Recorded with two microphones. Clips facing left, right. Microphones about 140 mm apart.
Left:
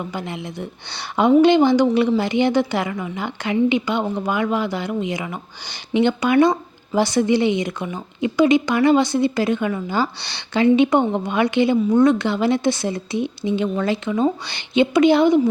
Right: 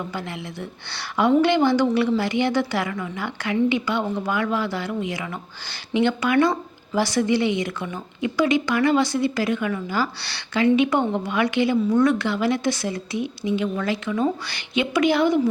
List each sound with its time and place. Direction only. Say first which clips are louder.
0.0 s a woman's voice: left 3 dB; 20° left (ahead or behind)